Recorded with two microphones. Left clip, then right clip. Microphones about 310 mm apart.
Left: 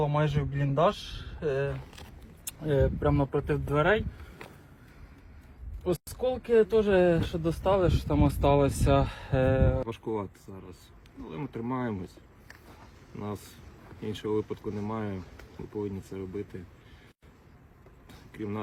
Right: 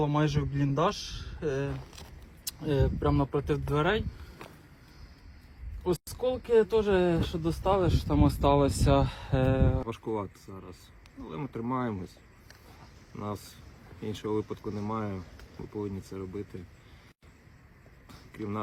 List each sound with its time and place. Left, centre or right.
0.0 s a man's voice: right
2.5 s speech: centre
6.1 s a man's voice: centre
6.6 s speech: centre
6.9 s a man's voice: centre
9.8 s speech: centre
13.1 s speech: centre
18.3 s speech: centre